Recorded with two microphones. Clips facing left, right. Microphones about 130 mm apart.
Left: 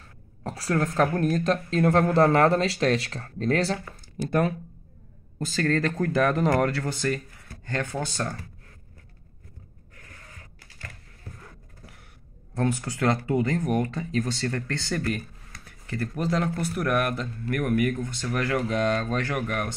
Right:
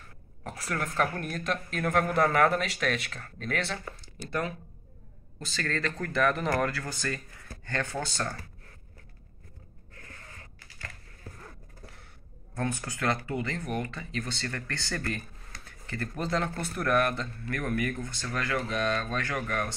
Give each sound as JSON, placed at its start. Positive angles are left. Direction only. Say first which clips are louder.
{"t": 0.4, "sound": "a woman's voice", "louder": "left 8 dB", "side_deg": 30}
{"t": 4.2, "sound": "a woman's voice", "louder": "left 8 dB", "side_deg": 50}
{"t": 6.0, "sound": "a woman's voice", "louder": "left 3 dB", "side_deg": 30}
{"t": 12.5, "sound": "a woman's voice", "louder": "left 6 dB", "side_deg": 25}
{"t": 14.5, "sound": "speech", "louder": "left 6 dB", "side_deg": 20}